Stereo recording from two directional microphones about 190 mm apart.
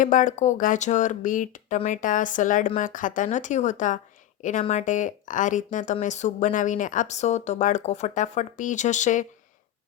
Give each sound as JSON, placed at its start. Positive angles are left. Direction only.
{"t": 0.0, "sound": "speech", "side_deg": 45}